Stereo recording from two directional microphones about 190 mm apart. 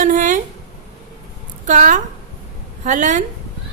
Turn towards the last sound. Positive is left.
turn(degrees=-40)  # may be behind; listen again after turning